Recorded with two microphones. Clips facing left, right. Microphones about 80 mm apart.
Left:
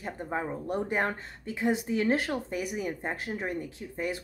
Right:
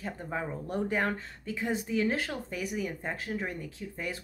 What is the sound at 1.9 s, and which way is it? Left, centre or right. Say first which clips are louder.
Speech: left 1 dB; left.